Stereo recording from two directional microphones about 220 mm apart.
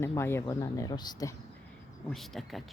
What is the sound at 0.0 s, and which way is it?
Speech, 10° left (ahead or behind).